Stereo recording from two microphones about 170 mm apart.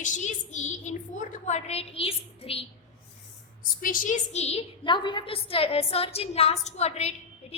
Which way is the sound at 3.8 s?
55° left (ahead or behind).